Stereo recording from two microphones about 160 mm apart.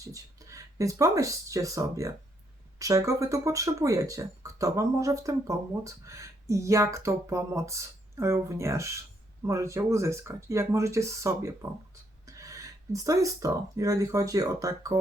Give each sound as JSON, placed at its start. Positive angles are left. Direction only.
{"t": 0.0, "sound": "speech", "side_deg": -20}